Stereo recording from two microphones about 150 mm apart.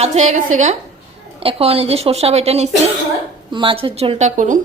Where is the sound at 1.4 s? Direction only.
40° right (ahead or behind); by 4.6 s 55° right (ahead or behind).